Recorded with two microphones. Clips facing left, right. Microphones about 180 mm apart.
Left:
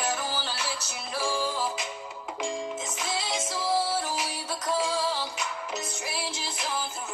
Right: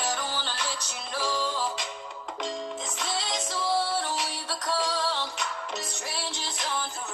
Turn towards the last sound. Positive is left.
turn(degrees=5)  # may be behind; listen again after turning